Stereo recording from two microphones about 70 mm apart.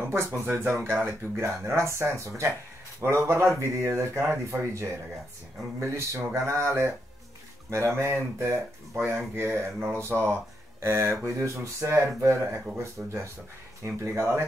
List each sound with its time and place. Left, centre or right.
0.0 s speech: right
11.3 s speech: right